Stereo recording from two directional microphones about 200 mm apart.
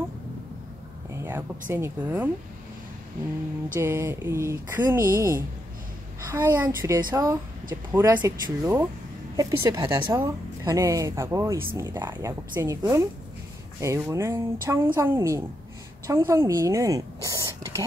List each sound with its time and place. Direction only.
1.7 s a woman's voice: 10° right (ahead or behind)
3.7 s a woman's voice: 10° right (ahead or behind)